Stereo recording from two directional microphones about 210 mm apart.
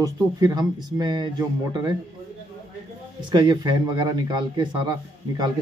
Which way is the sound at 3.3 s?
20° right (ahead or behind).